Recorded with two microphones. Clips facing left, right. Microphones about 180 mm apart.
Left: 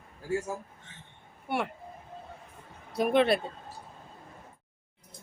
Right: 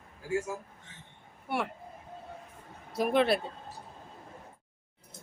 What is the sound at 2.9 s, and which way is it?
Speech, centre (ahead or behind).